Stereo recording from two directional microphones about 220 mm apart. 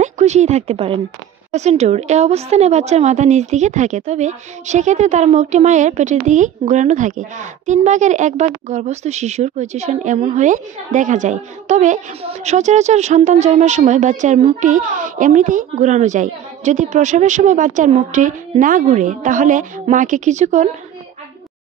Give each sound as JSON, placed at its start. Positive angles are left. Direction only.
{"t": 0.0, "sound": "a woman's voice", "side_deg": -30}